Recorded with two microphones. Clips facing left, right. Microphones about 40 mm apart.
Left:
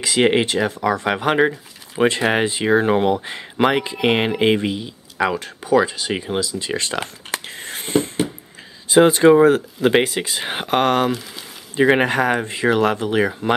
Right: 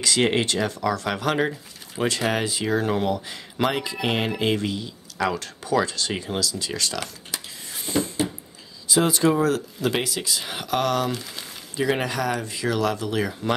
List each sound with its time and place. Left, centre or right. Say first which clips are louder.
0.0 s speech: left 5 dB; centre
7.2 s a sound: left 7 dB; left
8.8 s speech: left 8 dB; left
11.1 s speech: left 5 dB; centre
11.7 s speech: left 8 dB; left